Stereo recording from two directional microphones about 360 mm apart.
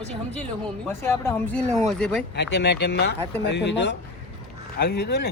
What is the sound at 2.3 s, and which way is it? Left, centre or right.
Speech, left.